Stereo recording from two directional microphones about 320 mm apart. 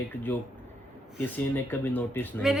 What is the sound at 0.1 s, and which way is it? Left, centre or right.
Speech, centre.